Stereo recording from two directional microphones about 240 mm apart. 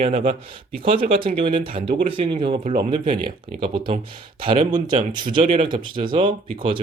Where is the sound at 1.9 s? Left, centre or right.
Right.